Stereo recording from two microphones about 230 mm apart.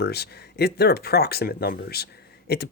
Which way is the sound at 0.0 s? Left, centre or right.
Left.